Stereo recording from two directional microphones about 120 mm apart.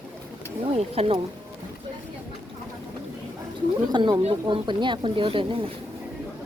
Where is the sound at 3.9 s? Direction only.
35° right (ahead or behind).